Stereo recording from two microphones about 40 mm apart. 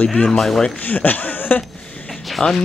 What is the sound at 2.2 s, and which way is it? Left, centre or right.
Speech, centre.